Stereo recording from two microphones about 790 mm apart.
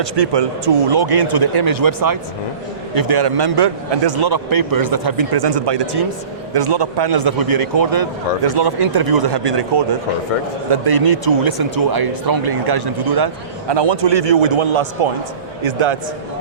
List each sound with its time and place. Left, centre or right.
0.0 s speech: right